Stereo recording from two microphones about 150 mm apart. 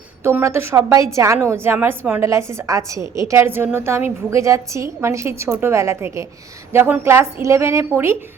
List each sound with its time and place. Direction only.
0.2 s a woman's voice: 15° right (ahead or behind)